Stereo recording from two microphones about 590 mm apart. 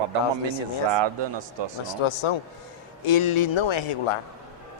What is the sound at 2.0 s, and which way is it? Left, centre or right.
A man's voice, left.